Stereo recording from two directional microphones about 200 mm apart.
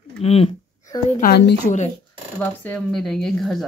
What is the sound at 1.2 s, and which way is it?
Speech, 45° left (ahead or behind).